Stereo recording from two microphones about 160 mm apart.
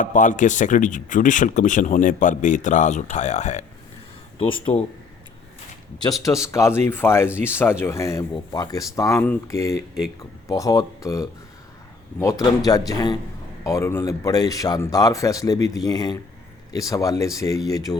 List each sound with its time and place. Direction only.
0.0 s speech: 55° left (ahead or behind)
4.4 s speech: 35° left (ahead or behind)
6.2 s speech: 20° left (ahead or behind)